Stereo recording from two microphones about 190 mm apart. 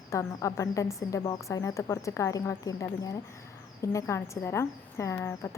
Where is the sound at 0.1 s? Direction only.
15° left (ahead or behind).